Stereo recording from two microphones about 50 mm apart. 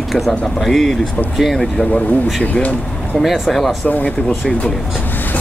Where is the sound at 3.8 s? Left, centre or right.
Left.